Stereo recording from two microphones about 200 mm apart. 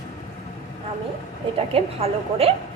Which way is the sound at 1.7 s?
30° right (ahead or behind).